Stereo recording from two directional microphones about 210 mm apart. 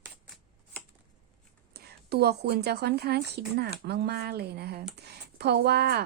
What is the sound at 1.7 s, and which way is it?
A woman's voice, 50° right (ahead or behind).